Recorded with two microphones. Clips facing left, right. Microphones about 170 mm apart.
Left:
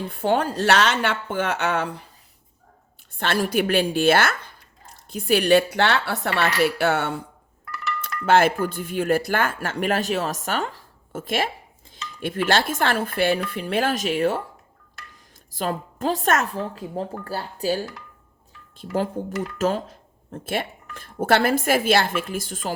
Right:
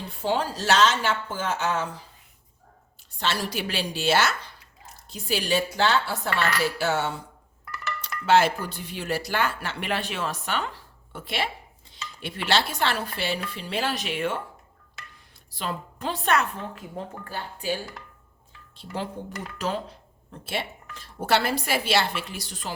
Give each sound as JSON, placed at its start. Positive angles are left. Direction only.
{"t": 0.1, "sound": "speech", "side_deg": 55}
{"t": 3.2, "sound": "speech", "side_deg": 55}
{"t": 8.2, "sound": "speech", "side_deg": 50}
{"t": 15.5, "sound": "speech", "side_deg": 45}
{"t": 19.5, "sound": "speech", "side_deg": 45}